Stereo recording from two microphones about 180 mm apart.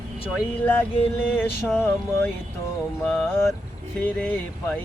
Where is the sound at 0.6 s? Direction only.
10° left (ahead or behind).